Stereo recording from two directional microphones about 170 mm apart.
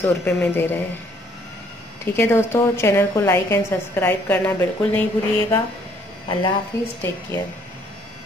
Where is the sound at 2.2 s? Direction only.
15° left (ahead or behind).